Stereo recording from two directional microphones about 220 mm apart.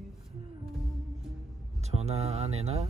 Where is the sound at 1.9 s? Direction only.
30° right (ahead or behind).